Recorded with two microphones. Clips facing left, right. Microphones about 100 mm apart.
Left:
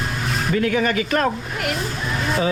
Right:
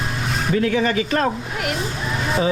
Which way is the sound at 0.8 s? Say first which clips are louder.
Even; 30° right (ahead or behind).